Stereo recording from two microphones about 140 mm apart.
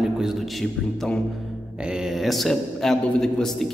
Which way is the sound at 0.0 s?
5° right (ahead or behind).